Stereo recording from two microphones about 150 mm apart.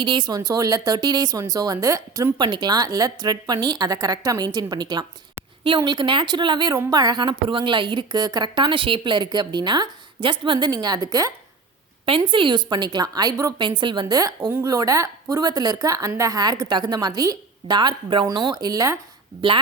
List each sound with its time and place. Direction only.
0.0 s a woman's voice: 30° right (ahead or behind)
19.4 s a woman's voice: 35° right (ahead or behind)